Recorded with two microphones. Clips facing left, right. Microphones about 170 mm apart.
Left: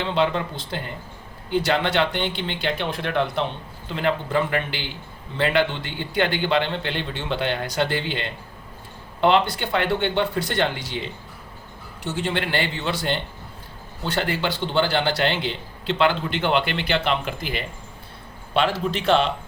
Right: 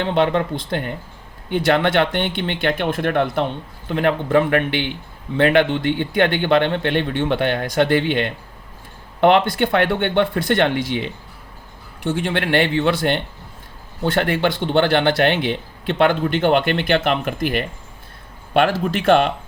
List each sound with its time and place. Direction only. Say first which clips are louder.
0.0 s a man's voice: right 4 dB; 55° right (ahead or behind)